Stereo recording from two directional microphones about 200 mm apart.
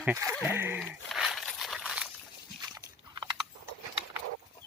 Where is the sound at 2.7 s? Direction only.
20° right (ahead or behind).